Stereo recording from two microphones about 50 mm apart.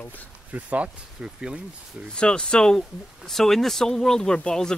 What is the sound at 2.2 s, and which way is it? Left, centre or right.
Speech, centre.